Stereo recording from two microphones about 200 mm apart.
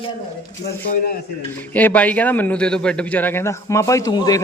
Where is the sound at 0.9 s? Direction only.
50° left (ahead or behind).